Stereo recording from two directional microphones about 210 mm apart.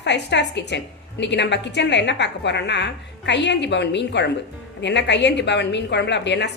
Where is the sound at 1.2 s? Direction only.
55° left (ahead or behind).